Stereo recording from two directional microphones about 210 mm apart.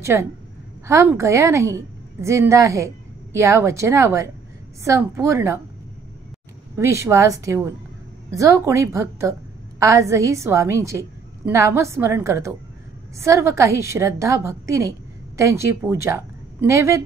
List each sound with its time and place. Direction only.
0.0 s a woman's voice: 15° right (ahead or behind)
6.8 s a woman's voice: 15° right (ahead or behind)